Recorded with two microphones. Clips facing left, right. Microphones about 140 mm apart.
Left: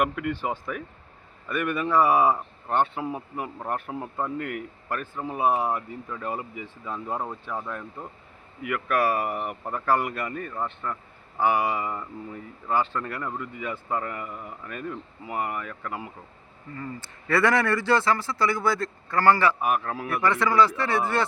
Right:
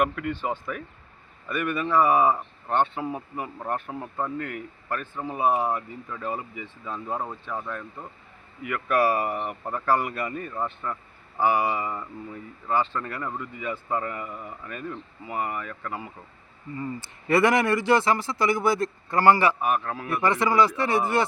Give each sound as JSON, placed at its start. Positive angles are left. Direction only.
{"t": 0.0, "sound": "speech", "side_deg": 5}
{"t": 16.7, "sound": "a man's voice", "side_deg": -15}
{"t": 19.6, "sound": "a man's voice", "side_deg": 10}
{"t": 20.2, "sound": "a man's voice", "side_deg": -15}